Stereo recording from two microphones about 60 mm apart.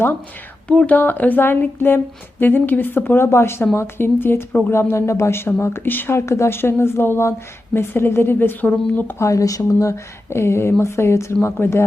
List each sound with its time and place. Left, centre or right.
0.9 s speech: left
3.2 s a woman's voice: left
6.1 s a woman's voice: left
8.6 s speech: left
9.1 s a woman's voice: left
11.6 s speech: left